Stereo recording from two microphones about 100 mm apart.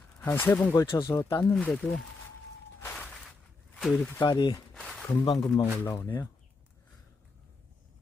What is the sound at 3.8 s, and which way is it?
Speech, centre (ahead or behind).